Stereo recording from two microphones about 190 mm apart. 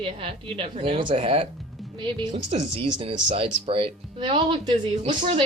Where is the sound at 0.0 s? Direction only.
25° right (ahead or behind).